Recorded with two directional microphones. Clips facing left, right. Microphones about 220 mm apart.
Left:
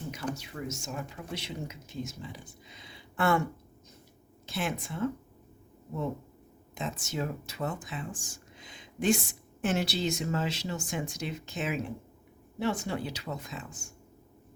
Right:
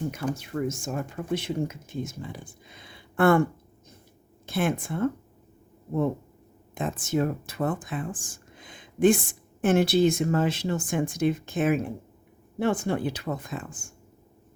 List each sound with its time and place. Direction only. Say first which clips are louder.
0.1 s speech: right 6 dB; 55° right (ahead or behind)
4.4 s speech: right 7 dB; 55° right (ahead or behind)
6.7 s speech: right 8 dB; 50° right (ahead or behind)